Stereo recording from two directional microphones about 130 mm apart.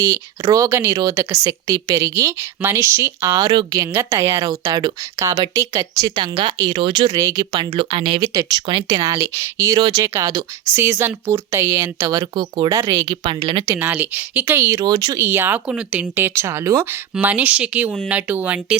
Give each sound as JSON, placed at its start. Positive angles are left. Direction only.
{"t": 0.0, "sound": "speech", "side_deg": -25}
{"t": 7.1, "sound": "speech", "side_deg": -25}
{"t": 7.5, "sound": "speech", "side_deg": -45}
{"t": 8.2, "sound": "speech", "side_deg": -30}
{"t": 9.0, "sound": "speech", "side_deg": -25}
{"t": 10.8, "sound": "speech", "side_deg": -15}
{"t": 13.2, "sound": "speech", "side_deg": -40}
{"t": 13.7, "sound": "speech", "side_deg": -15}
{"t": 15.2, "sound": "speech", "side_deg": -15}